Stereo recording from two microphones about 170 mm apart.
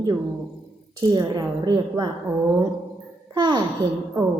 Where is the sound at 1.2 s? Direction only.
25° right (ahead or behind).